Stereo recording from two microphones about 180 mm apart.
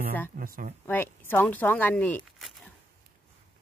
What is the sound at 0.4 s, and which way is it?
Speech, 50° right (ahead or behind).